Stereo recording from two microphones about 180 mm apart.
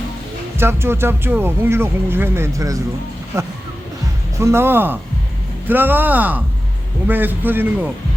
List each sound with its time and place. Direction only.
0.5 s speech: 15° right (ahead or behind)